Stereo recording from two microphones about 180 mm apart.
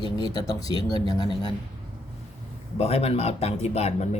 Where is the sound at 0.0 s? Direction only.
20° left (ahead or behind).